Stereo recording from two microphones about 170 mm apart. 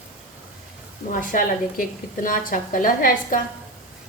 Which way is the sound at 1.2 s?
50° left (ahead or behind).